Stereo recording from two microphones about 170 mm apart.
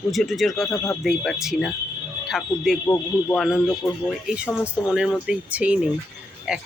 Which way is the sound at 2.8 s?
15° left (ahead or behind).